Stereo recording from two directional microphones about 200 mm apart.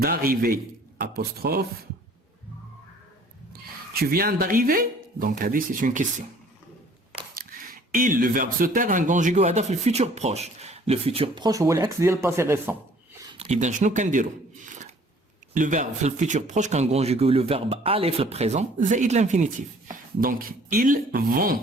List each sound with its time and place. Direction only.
0.0 s a man's voice: 45° right (ahead or behind)
3.9 s speech: 50° right (ahead or behind)
7.3 s speech: 45° right (ahead or behind); by 12.7 s 10° right (ahead or behind)
13.3 s speech: 30° right (ahead or behind)
15.5 s speech: 40° right (ahead or behind)